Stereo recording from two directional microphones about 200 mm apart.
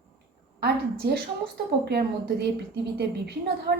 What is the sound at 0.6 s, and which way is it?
A woman's voice, 55° right (ahead or behind).